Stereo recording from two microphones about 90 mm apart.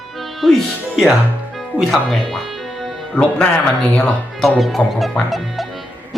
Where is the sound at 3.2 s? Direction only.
10° left (ahead or behind).